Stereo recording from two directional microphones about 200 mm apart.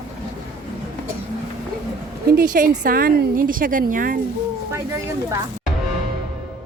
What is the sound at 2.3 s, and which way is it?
A woman's voice, 45° right (ahead or behind).